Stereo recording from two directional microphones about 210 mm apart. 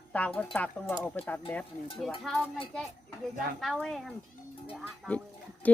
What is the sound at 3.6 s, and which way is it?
Speech, centre (ahead or behind).